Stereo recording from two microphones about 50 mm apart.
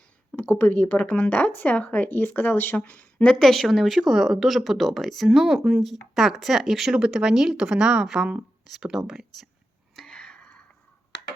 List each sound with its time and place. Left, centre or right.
0.3 s speech: left
2.0 s speech: left
2.7 s speech: left
3.4 s speech: centre
5.3 s speech: centre
10.1 s a sound: centre